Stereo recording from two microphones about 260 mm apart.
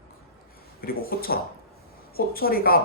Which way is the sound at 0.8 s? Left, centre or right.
Left.